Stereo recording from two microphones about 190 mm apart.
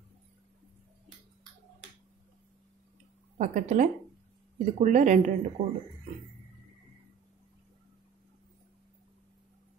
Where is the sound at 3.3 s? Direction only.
40° right (ahead or behind).